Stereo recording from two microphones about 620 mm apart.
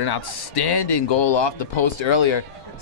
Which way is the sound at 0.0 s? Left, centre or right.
Left.